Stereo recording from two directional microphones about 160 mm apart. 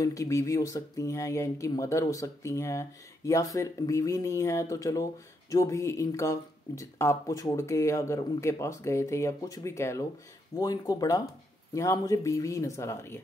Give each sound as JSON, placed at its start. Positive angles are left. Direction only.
{"t": 0.0, "sound": "speech", "side_deg": 20}